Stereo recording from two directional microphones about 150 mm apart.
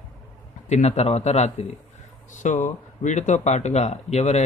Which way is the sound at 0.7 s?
45° left (ahead or behind).